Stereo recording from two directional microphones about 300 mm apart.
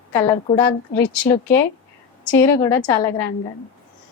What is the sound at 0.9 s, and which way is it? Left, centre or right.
Speech, left.